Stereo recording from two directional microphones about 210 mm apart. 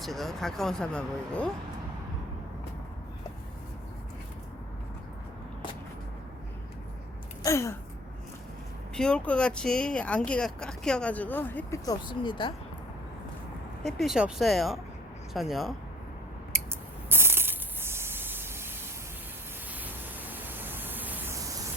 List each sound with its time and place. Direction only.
0.0 s speech: centre (ahead or behind)
7.4 s gasp: 15° left (ahead or behind)
9.0 s speech: 5° left (ahead or behind); by 12.5 s 20° left (ahead or behind)
13.8 s speech: centre (ahead or behind)
17.1 s a sound: 10° right (ahead or behind)
19.7 s a sound: 10° right (ahead or behind)